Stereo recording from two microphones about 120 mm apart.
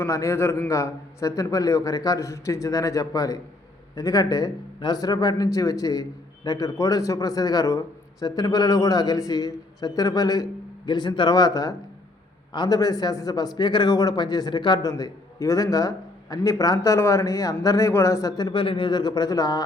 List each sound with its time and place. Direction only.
0.0 s a man's voice: 25° left (ahead or behind)